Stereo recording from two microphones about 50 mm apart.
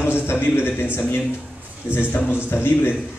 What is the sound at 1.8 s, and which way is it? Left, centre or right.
A man's voice, left.